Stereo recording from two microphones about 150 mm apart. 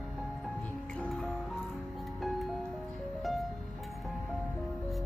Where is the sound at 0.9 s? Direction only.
5° left (ahead or behind).